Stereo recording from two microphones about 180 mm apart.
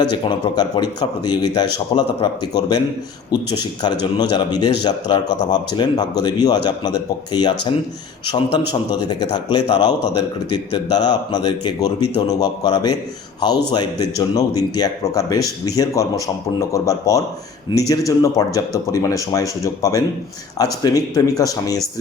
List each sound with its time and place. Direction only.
0.0 s speech: 25° left (ahead or behind)